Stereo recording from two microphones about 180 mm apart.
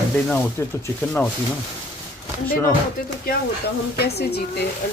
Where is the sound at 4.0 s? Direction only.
65° left (ahead or behind).